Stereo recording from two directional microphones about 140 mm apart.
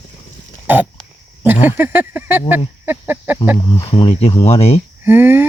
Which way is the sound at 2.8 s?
15° right (ahead or behind).